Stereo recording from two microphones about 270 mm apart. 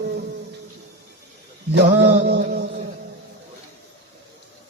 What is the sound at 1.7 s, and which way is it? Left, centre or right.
Mantra, right.